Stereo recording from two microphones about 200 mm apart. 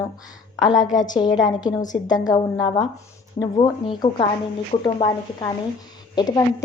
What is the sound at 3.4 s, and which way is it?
Speech, 20° left (ahead or behind).